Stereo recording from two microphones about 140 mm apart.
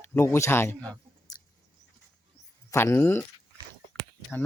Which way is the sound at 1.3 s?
25° left (ahead or behind).